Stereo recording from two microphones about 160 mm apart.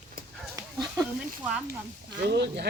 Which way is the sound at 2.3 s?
90° right.